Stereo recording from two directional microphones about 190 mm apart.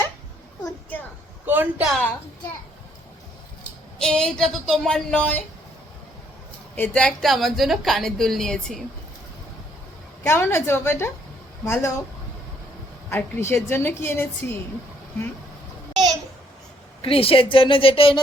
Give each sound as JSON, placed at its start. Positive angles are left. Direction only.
{"t": 1.5, "sound": "a woman's voice", "side_deg": -10}
{"t": 3.9, "sound": "a woman's voice", "side_deg": 5}
{"t": 6.7, "sound": "a woman's voice", "side_deg": 10}
{"t": 10.2, "sound": "a woman's voice", "side_deg": 15}
{"t": 13.1, "sound": "a woman's voice", "side_deg": 10}
{"t": 17.0, "sound": "speech", "side_deg": 30}